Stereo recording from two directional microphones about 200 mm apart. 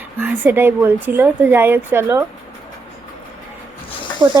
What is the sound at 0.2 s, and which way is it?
Speech, 10° right (ahead or behind).